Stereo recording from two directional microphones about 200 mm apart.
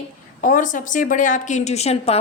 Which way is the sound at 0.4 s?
40° left (ahead or behind).